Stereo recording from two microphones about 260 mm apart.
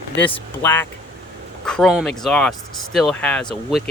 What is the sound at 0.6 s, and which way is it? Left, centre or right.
Speech, centre.